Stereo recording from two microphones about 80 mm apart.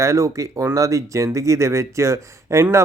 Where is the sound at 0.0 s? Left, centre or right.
Right.